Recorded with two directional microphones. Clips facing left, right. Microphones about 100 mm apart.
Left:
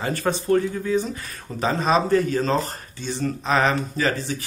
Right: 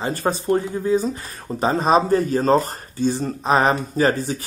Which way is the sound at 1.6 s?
35° right (ahead or behind).